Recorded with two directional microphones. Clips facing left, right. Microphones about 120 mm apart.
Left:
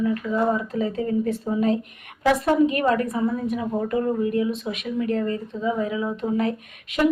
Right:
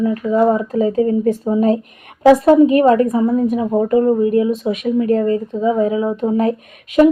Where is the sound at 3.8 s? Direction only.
30° right (ahead or behind).